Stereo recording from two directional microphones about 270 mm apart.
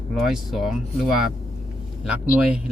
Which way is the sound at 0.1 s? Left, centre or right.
Centre.